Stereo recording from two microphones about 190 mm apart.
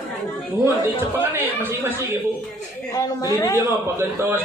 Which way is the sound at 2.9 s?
20° left (ahead or behind).